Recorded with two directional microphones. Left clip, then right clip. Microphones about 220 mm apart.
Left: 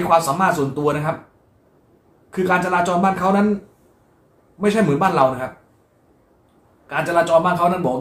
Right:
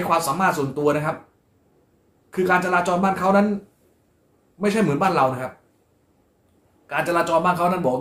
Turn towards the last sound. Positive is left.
turn(degrees=-20)  # may be behind; listen again after turning